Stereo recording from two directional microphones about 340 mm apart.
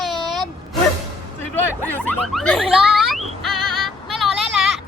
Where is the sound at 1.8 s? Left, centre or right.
Centre.